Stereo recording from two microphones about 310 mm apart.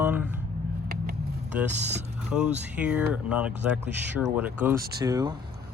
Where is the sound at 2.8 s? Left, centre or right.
Centre.